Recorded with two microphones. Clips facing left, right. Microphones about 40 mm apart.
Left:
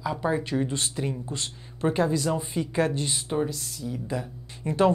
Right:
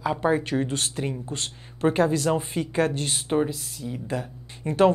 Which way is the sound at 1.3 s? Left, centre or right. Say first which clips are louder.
Right 1 dB; right.